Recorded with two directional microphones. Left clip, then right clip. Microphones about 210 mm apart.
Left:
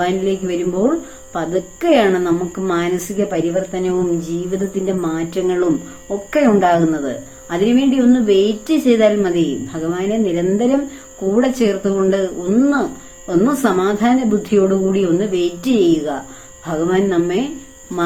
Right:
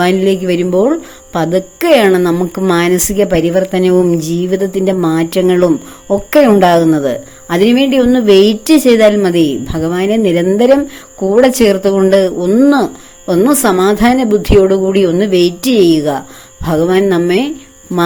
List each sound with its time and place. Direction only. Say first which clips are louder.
0.0 s speech: right 7 dB; 50° right (ahead or behind)